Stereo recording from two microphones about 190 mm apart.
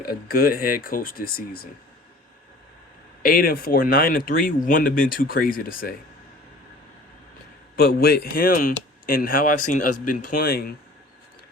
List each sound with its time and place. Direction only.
0.0 s speech: 50° left (ahead or behind)
3.2 s speech: 50° left (ahead or behind)
7.8 s speech: 55° left (ahead or behind)